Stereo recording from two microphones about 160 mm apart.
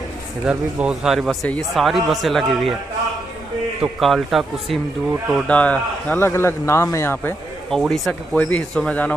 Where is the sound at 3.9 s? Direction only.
Centre (ahead or behind); by 7.3 s 15° left (ahead or behind).